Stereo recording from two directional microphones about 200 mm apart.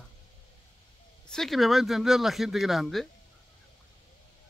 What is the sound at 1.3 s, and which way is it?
Speech, centre (ahead or behind).